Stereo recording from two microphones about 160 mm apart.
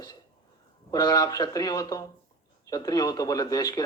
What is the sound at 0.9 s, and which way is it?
A man's voice, 25° left (ahead or behind).